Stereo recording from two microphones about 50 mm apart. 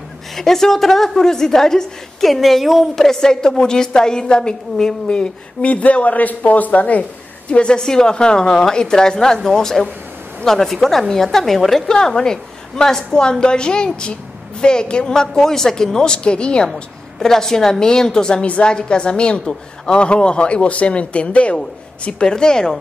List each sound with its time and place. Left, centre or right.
0.4 s a woman's voice: centre
3.0 s a woman's voice: centre
17.2 s a woman's voice: centre